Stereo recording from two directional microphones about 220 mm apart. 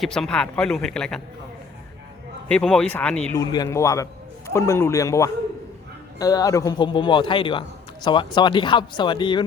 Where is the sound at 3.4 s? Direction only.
15° left (ahead or behind).